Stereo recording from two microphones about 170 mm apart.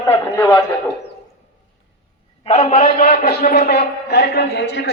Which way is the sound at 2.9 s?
60° left (ahead or behind).